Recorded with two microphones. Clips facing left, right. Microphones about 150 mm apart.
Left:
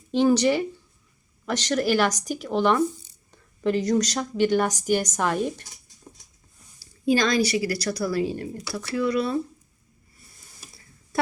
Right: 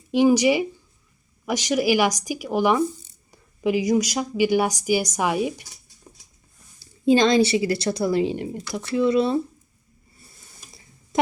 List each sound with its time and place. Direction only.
0.1 s speech: 10° right (ahead or behind)
6.7 s a woman's voice: 25° right (ahead or behind)
11.1 s a sound: 20° right (ahead or behind)